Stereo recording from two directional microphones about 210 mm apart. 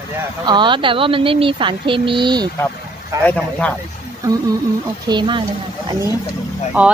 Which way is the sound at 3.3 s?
5° left (ahead or behind).